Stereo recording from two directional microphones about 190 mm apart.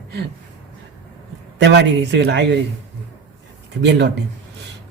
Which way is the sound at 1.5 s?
70° right (ahead or behind).